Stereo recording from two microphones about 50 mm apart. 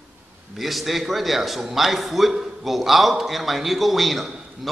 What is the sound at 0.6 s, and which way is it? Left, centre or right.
A man's voice, centre.